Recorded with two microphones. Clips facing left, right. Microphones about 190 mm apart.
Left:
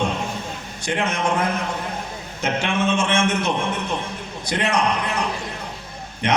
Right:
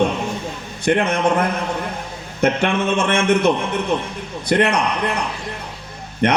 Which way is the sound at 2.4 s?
60° right (ahead or behind).